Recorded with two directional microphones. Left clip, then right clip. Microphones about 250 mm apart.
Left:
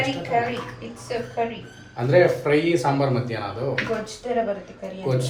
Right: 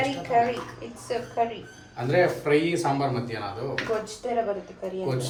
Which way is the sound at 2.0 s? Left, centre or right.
Centre.